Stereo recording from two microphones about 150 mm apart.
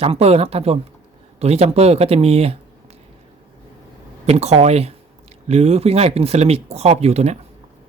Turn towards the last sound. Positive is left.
turn(degrees=-45)  # may be behind; listen again after turning